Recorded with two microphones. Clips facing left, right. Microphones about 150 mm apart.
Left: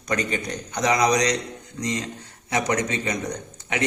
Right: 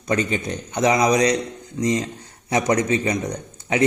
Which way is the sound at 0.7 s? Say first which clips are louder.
Right 3 dB; 30° right (ahead or behind).